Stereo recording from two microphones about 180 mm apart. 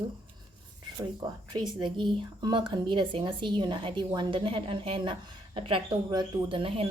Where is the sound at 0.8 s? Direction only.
25° right (ahead or behind).